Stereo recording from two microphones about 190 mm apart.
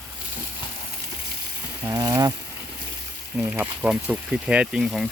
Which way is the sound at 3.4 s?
10° right (ahead or behind).